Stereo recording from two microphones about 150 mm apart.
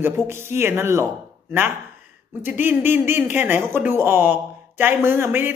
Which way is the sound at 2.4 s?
15° right (ahead or behind).